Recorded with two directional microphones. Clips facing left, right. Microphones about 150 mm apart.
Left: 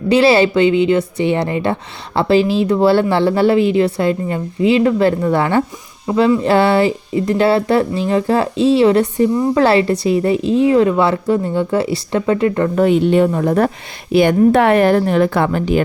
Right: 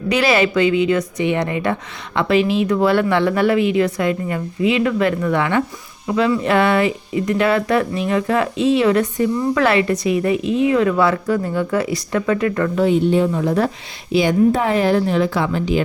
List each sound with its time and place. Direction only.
0.1 s speech: 30° left (ahead or behind)
12.7 s speech: 65° left (ahead or behind)